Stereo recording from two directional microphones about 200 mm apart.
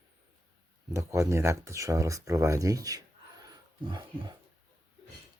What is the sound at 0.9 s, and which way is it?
Speech, 15° right (ahead or behind).